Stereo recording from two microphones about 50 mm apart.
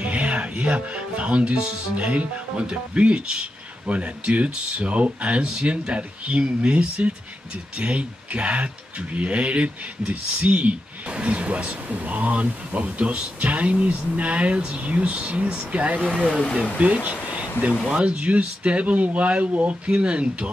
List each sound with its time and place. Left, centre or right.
0.0 s speech: right
16.4 s speech: left
16.7 s speech: right